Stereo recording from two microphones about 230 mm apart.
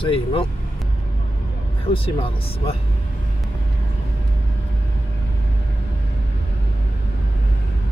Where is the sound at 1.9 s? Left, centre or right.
Left.